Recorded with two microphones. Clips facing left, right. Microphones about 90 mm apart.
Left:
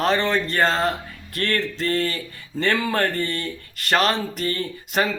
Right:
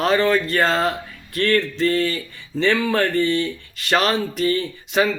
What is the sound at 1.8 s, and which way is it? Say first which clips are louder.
Speech: right 4 dB; 40° left (ahead or behind).